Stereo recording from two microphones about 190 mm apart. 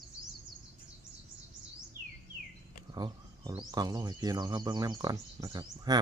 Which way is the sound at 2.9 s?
25° right (ahead or behind).